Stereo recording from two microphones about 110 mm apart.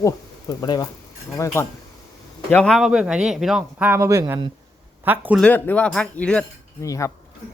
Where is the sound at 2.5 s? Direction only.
10° left (ahead or behind).